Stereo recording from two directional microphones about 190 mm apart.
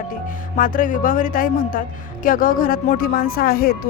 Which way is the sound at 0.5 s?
45° left (ahead or behind).